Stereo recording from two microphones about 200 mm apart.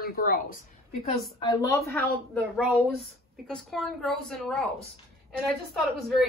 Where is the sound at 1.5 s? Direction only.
15° left (ahead or behind).